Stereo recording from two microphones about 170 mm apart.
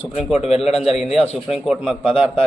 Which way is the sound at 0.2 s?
Centre (ahead or behind).